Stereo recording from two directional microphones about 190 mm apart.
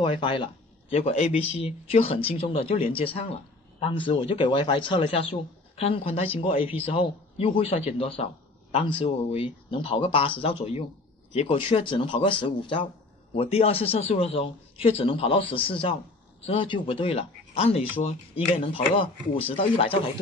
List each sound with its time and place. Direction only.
0.0 s speech: 25° left (ahead or behind)